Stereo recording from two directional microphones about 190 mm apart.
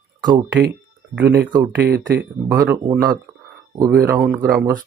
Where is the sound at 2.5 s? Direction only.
20° right (ahead or behind).